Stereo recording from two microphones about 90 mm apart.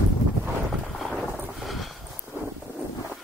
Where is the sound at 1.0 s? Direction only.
Centre (ahead or behind).